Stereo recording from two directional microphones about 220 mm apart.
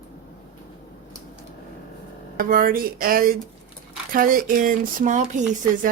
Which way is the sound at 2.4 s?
40° right (ahead or behind).